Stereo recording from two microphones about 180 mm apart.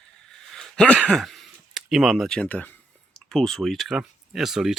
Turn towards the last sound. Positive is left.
turn(degrees=0)  # may be behind; listen again after turning